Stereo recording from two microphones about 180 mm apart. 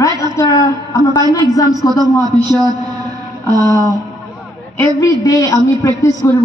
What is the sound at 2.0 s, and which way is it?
Speech, 20° right (ahead or behind).